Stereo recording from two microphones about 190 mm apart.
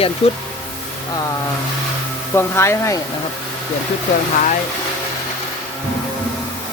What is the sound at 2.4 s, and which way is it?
Speech, 15° left (ahead or behind).